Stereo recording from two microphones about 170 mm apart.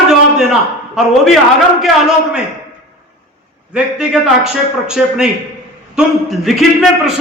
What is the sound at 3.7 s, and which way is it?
A man's voice, 5° right (ahead or behind).